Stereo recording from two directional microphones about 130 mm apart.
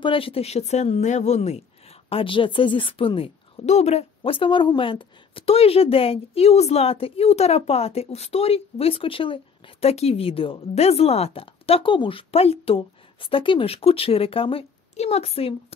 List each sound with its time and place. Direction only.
0.0 s a woman's voice: 45° left (ahead or behind)
2.0 s a woman's voice: 45° left (ahead or behind)